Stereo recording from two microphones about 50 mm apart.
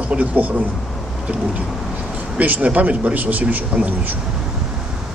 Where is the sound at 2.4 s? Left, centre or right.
Right.